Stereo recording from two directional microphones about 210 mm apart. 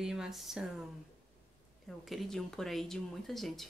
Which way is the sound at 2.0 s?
Centre (ahead or behind).